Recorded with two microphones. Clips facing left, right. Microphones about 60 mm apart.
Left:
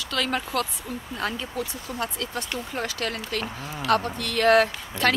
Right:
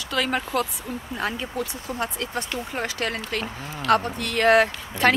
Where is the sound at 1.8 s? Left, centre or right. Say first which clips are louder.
Right 2 dB; right.